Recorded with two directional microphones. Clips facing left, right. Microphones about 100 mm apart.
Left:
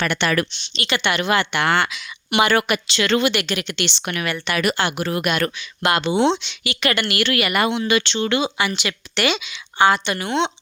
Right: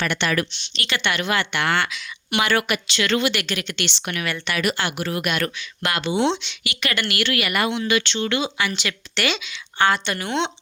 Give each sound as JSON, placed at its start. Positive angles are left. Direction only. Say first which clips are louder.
{"t": 0.0, "sound": "a woman's voice", "louder": "left 2 dB", "side_deg": 50}
{"t": 0.5, "sound": "a woman's voice", "louder": "left 3 dB", "side_deg": 25}
{"t": 4.0, "sound": "speech", "louder": "left 1 dB", "side_deg": 40}
{"t": 4.5, "sound": "a woman's voice", "louder": "left 2 dB", "side_deg": 60}
{"t": 4.8, "sound": "a woman's voice", "louder": "left 3 dB", "side_deg": 25}